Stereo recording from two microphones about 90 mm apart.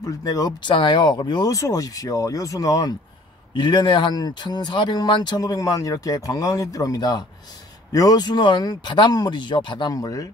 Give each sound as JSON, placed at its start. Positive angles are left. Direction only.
{"t": 0.0, "sound": "speech", "side_deg": 45}
{"t": 0.7, "sound": "speech", "side_deg": 60}
{"t": 1.5, "sound": "speech", "side_deg": 40}
{"t": 3.5, "sound": "speech", "side_deg": 60}
{"t": 9.9, "sound": "speech", "side_deg": 45}